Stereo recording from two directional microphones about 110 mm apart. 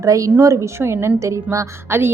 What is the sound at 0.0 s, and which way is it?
A woman's voice, 30° right (ahead or behind).